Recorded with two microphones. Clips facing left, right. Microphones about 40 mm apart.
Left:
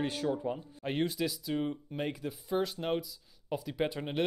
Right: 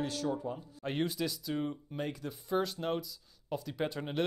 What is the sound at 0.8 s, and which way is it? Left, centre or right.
Speech, centre.